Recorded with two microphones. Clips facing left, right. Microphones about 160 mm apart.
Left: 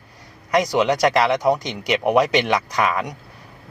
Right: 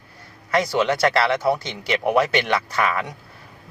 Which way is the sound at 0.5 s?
15° left (ahead or behind).